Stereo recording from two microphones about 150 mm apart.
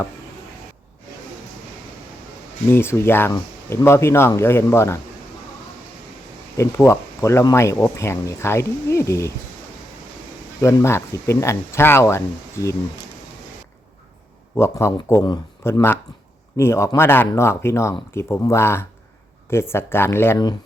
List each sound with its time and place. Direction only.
2.6 s speech: 15° left (ahead or behind)
6.6 s speech: 15° left (ahead or behind)
10.6 s speech: 20° left (ahead or behind)
14.5 s speech: 15° left (ahead or behind)